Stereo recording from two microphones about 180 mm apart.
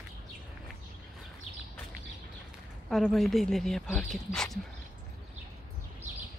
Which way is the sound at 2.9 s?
Centre (ahead or behind).